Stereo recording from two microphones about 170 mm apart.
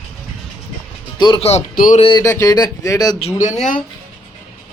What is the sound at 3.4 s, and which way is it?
Speech, 45° left (ahead or behind).